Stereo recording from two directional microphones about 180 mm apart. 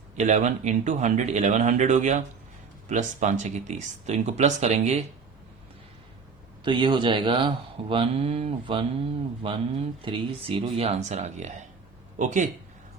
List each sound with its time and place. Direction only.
0.2 s speech: 40° right (ahead or behind)
6.7 s a man's voice: 25° right (ahead or behind); by 12.5 s 45° right (ahead or behind)